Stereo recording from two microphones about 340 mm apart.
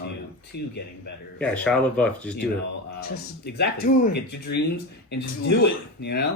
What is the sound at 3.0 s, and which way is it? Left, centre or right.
Speech, left.